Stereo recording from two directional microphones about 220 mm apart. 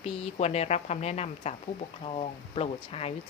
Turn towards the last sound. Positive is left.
turn(degrees=25)  # may be behind; listen again after turning